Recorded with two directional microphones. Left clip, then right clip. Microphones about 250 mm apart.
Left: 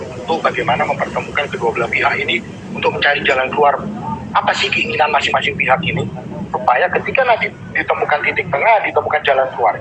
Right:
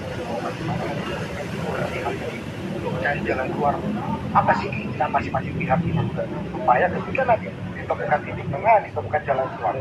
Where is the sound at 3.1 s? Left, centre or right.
Left.